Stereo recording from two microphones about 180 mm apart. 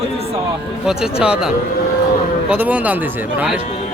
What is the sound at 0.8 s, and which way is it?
Speech, 5° right (ahead or behind).